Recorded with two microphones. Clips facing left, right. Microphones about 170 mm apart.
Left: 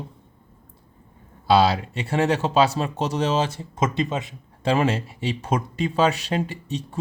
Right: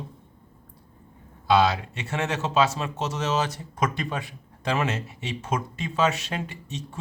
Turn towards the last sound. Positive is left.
turn(degrees=35)  # may be behind; listen again after turning